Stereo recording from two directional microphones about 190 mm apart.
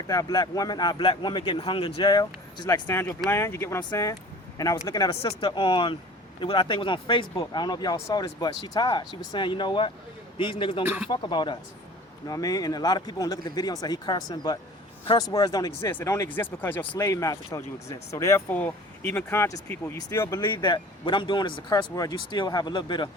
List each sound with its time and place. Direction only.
0.1 s speech: 20° left (ahead or behind)
2.8 s speech: 10° left (ahead or behind); by 10.8 s 30° left (ahead or behind)
10.8 s speech: 10° right (ahead or behind)
11.1 s speech: 25° left (ahead or behind)